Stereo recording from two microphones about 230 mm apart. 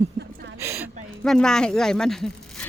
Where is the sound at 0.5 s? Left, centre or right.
Centre.